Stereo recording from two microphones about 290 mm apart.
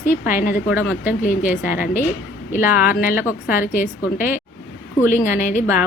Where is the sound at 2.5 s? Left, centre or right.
Centre.